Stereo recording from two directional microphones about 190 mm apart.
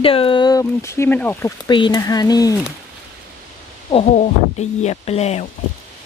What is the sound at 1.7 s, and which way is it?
Speech, 25° left (ahead or behind).